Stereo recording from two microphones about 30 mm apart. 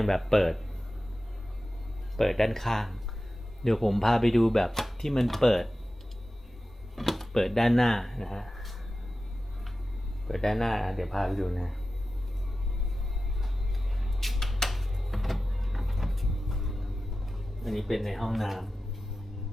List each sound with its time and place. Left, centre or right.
0.0 s speech: centre
2.1 s speech: centre
6.9 s speech: centre
10.2 s speech: centre
14.0 s a sound: centre
17.3 s speech: centre